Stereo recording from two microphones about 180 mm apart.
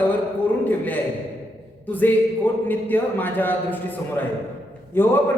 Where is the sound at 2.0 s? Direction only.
10° left (ahead or behind).